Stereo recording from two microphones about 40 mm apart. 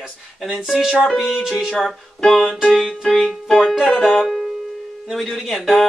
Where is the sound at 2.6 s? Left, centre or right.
Centre.